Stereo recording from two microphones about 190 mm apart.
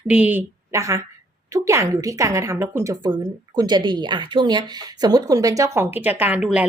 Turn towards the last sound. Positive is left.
turn(degrees=-10)  # may be behind; listen again after turning